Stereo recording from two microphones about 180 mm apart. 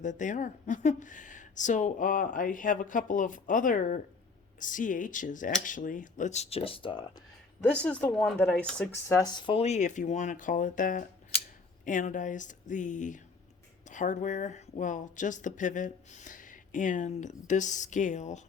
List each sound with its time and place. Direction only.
0.0 s speech: 45° left (ahead or behind)
7.6 s speech: 5° left (ahead or behind)
9.1 s speech: 25° left (ahead or behind); by 18.4 s 40° left (ahead or behind)